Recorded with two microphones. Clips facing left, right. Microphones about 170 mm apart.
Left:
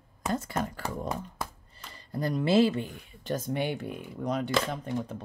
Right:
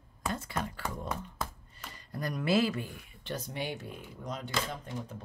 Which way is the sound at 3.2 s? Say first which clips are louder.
Left 7 dB; 50° left (ahead or behind).